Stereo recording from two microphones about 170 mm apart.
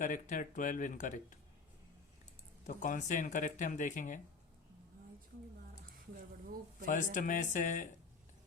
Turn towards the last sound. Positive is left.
turn(degrees=50)  # may be behind; listen again after turning